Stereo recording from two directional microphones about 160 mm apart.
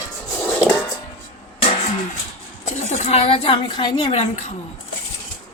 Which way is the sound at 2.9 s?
40° left (ahead or behind).